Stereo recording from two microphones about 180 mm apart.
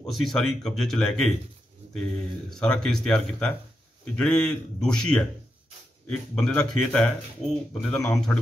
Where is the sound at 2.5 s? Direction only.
5° left (ahead or behind).